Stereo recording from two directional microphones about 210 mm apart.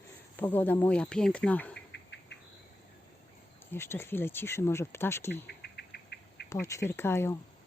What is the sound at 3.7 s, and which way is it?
Speech, 10° left (ahead or behind).